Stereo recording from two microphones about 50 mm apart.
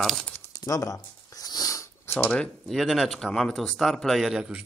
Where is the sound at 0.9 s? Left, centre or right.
Left.